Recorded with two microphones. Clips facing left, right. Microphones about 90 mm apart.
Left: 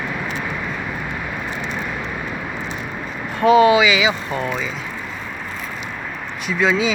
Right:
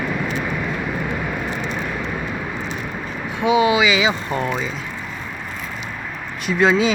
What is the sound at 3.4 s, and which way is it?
Speech, 40° left (ahead or behind).